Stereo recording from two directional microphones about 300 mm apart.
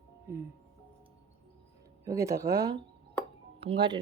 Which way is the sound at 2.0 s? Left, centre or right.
Centre.